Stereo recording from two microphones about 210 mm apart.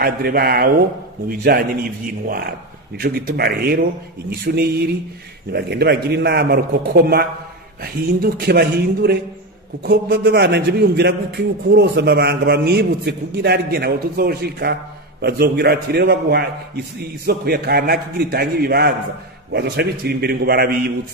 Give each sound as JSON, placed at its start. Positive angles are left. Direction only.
{"t": 0.0, "sound": "a man's voice", "side_deg": -45}